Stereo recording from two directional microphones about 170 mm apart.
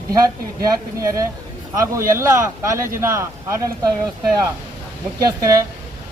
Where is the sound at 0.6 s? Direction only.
20° right (ahead or behind).